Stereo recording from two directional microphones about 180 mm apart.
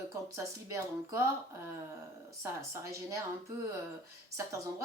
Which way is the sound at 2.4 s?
15° right (ahead or behind).